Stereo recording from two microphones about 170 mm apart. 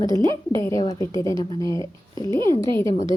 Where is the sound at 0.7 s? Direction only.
20° left (ahead or behind).